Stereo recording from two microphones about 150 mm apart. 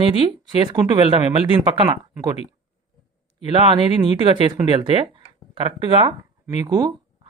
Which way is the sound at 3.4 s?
35° right (ahead or behind).